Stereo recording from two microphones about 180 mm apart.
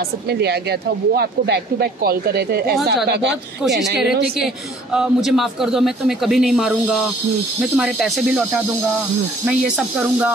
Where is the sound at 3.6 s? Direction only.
5° right (ahead or behind).